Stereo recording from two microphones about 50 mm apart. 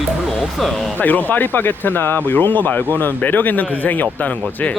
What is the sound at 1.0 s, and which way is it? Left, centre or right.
Speech, left.